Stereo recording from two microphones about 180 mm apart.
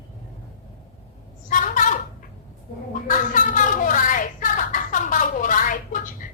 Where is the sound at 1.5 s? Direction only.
45° left (ahead or behind).